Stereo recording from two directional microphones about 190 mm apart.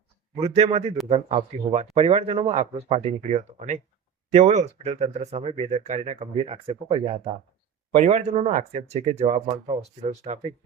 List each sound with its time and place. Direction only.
0.3 s speech: 35° right (ahead or behind)
4.3 s speech: 35° right (ahead or behind)